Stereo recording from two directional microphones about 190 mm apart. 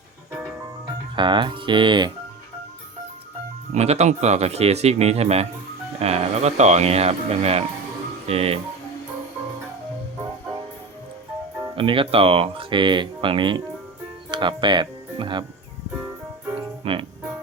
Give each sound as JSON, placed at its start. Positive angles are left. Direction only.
{"t": 1.1, "sound": "speech", "side_deg": -25}
{"t": 3.8, "sound": "speech", "side_deg": -35}
{"t": 11.8, "sound": "speech", "side_deg": -25}
{"t": 16.8, "sound": "music", "side_deg": -30}